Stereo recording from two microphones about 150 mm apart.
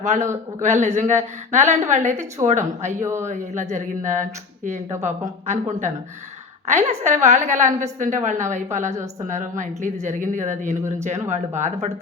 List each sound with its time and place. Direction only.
0.0 s speech: 50° right (ahead or behind)
2.9 s a man's voice: 15° right (ahead or behind)
3.2 s speech: 50° right (ahead or behind)